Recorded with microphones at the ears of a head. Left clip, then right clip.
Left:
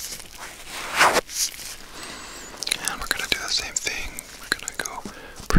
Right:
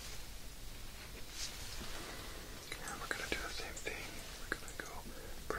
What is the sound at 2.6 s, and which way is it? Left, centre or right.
Whispering, left.